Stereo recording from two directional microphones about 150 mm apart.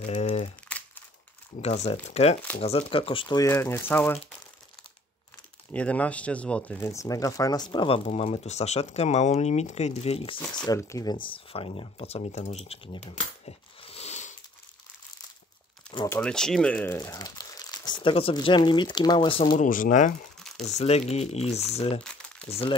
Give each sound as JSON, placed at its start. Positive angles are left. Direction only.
{"t": 0.0, "sound": "crumpling", "side_deg": 50}
{"t": 0.7, "sound": "crumpling", "side_deg": 10}
{"t": 1.6, "sound": "speech", "side_deg": 45}
{"t": 3.5, "sound": "speech", "side_deg": 15}
{"t": 5.7, "sound": "speech", "side_deg": 10}
{"t": 6.8, "sound": "speech", "side_deg": 20}
{"t": 10.7, "sound": "speech", "side_deg": 20}
{"t": 13.7, "sound": "mechanisms", "side_deg": 40}
{"t": 16.2, "sound": "speech", "side_deg": 5}
{"t": 16.9, "sound": "speech", "side_deg": 20}
{"t": 19.5, "sound": "speech", "side_deg": 60}
{"t": 20.6, "sound": "speech", "side_deg": 45}